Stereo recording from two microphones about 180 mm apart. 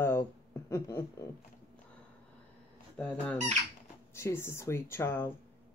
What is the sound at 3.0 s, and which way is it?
Speech, 5° left (ahead or behind).